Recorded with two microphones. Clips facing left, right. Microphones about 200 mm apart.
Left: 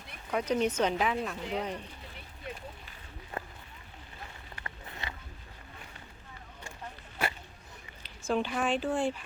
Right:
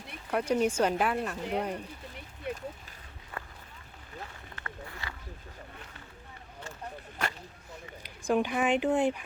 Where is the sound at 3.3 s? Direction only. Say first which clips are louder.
Left 3 dB; 25° left (ahead or behind).